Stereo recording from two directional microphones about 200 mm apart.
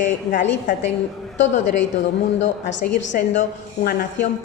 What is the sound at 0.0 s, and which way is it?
Speech, 40° left (ahead or behind).